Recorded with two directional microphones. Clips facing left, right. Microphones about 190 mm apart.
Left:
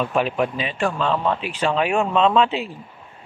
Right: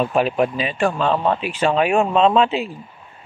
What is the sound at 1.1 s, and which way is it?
Speech, 35° right (ahead or behind).